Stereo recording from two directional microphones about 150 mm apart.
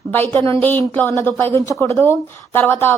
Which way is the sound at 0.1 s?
10° left (ahead or behind).